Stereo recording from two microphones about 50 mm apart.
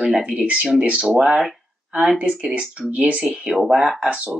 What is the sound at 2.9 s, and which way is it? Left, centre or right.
Speech, right.